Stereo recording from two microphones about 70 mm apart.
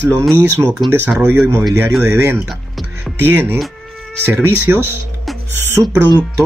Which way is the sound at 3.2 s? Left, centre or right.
Right.